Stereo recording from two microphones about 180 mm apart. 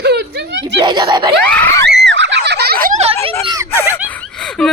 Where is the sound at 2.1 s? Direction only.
80° right; by 2.7 s 65° right (ahead or behind).